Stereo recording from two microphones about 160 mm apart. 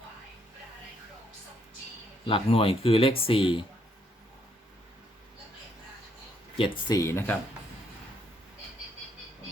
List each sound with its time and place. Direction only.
2.2 s speech: 35° left (ahead or behind)
6.6 s speech: 25° left (ahead or behind)